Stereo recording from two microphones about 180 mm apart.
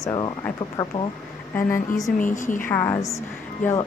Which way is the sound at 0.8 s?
15° left (ahead or behind).